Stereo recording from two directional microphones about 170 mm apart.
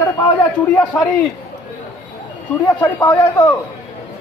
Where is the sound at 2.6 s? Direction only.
15° left (ahead or behind).